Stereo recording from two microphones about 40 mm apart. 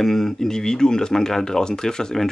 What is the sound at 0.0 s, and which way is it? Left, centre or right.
Speech, centre.